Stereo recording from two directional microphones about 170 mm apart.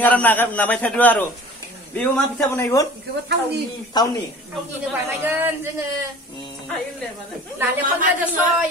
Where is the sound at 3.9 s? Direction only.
25° left (ahead or behind).